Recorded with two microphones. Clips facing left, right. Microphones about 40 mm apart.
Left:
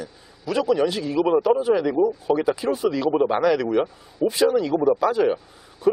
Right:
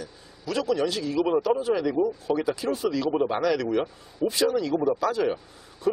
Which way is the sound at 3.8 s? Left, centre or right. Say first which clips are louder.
Left 4 dB; centre.